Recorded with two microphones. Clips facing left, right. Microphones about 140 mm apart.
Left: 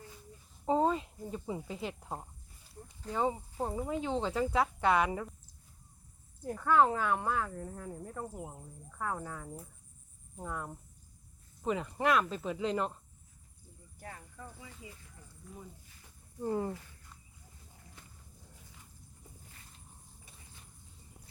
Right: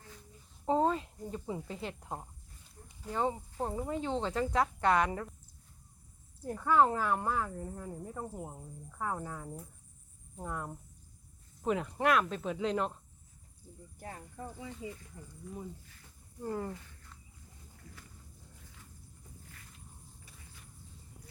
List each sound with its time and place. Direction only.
0.6 s speech: 5° left (ahead or behind)
6.4 s speech: 5° right (ahead or behind)
14.0 s speech: 30° right (ahead or behind)
16.4 s speech: 20° left (ahead or behind)